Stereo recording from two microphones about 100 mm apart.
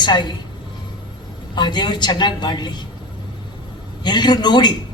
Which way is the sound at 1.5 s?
50° left (ahead or behind).